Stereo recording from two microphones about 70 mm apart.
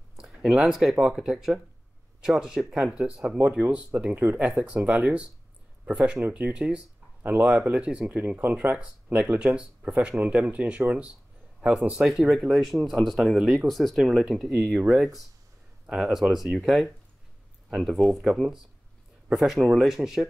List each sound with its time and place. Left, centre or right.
0.2 s speech: centre
6.3 s speech: centre
8.5 s speech: centre
12.0 s speech: centre